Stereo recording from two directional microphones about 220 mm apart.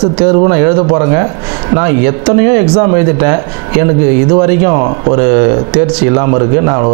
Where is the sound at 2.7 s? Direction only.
25° right (ahead or behind).